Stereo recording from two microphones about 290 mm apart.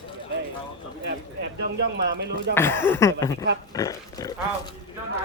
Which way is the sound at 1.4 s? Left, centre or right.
Right.